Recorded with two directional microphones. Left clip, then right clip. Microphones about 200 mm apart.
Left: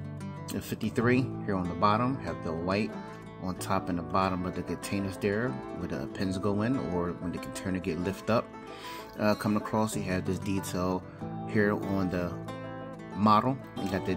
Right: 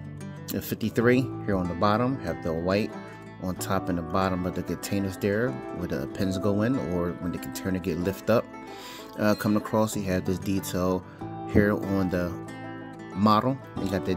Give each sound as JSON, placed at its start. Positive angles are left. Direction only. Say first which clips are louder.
{"t": 0.5, "sound": "speech", "louder": "right 5 dB", "side_deg": -35}